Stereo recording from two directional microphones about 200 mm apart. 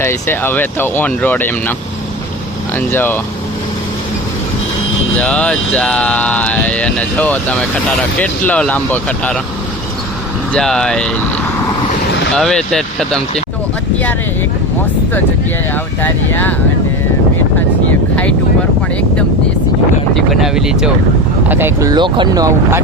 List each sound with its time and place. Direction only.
0.0 s speech: 10° left (ahead or behind)
2.7 s speech: 10° left (ahead or behind)
5.1 s speech: 5° left (ahead or behind)
10.5 s speech: 5° left (ahead or behind)
12.3 s speech: 5° left (ahead or behind)
16.0 s speech: 10° left (ahead or behind)
20.1 s speech: centre (ahead or behind)
21.5 s speech: 15° right (ahead or behind)